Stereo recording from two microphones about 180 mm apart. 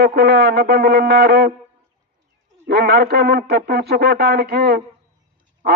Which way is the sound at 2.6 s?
60° right (ahead or behind).